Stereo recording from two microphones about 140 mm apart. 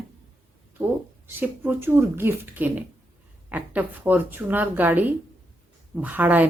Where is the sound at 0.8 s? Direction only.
25° right (ahead or behind).